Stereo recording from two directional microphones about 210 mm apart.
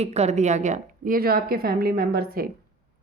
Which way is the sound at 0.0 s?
30° right (ahead or behind).